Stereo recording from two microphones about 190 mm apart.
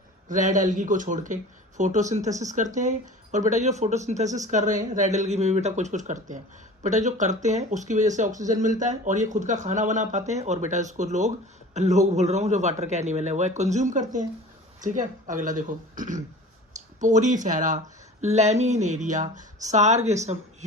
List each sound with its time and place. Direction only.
0.3 s speech: 40° right (ahead or behind)